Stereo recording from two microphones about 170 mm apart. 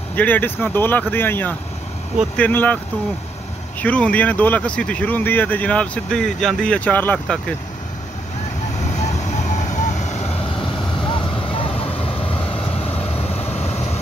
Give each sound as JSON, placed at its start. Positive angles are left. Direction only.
{"t": 0.1, "sound": "speech", "side_deg": 10}
{"t": 3.8, "sound": "speech", "side_deg": 10}
{"t": 9.0, "sound": "vehicle", "side_deg": 45}
{"t": 10.6, "sound": "vehicle", "side_deg": 30}
{"t": 13.5, "sound": "vehicle", "side_deg": 40}